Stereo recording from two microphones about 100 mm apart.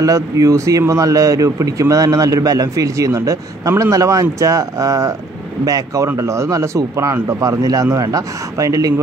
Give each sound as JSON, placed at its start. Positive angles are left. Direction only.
{"t": 0.0, "sound": "a man's voice", "side_deg": -35}